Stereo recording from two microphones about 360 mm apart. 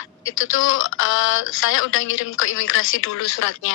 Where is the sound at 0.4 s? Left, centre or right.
Left.